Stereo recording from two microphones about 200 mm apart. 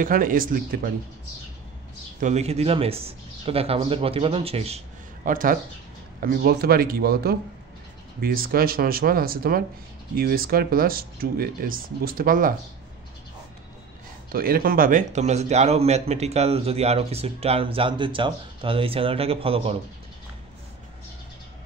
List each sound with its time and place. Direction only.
0.0 s speech: 45° right (ahead or behind)
2.1 s speech: 35° right (ahead or behind)
5.3 s speech: 45° right (ahead or behind)
14.3 s a man's voice: 45° right (ahead or behind); by 19.8 s 30° right (ahead or behind)